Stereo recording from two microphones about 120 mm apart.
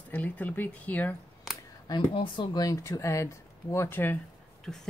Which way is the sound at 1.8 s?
40° left (ahead or behind).